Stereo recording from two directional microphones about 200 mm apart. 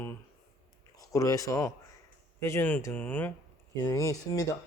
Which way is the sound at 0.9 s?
15° left (ahead or behind).